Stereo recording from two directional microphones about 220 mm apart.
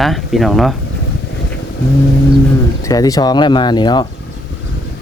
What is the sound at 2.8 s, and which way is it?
Speech, 15° left (ahead or behind).